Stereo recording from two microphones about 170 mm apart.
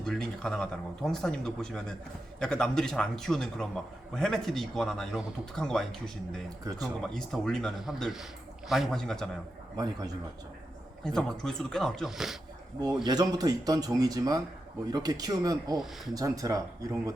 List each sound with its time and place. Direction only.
0.0 s speech: 5° left (ahead or behind)
9.7 s speech: 25° right (ahead or behind)
11.0 s speech: 5° left (ahead or behind)
12.8 s speech: 25° right (ahead or behind)